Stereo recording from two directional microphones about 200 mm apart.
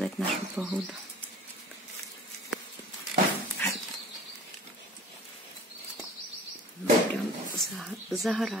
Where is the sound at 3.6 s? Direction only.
10° left (ahead or behind).